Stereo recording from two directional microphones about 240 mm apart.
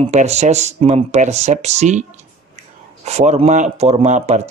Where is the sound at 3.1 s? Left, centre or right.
Right.